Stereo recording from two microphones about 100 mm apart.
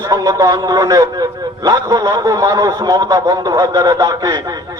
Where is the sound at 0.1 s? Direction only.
35° right (ahead or behind).